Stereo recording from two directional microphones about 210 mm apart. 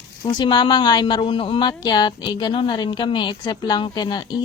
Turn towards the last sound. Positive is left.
turn(degrees=20)  # may be behind; listen again after turning